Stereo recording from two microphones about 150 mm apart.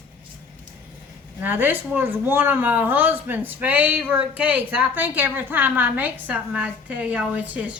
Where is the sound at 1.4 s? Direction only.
10° right (ahead or behind).